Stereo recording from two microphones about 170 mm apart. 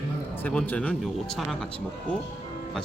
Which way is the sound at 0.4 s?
10° left (ahead or behind).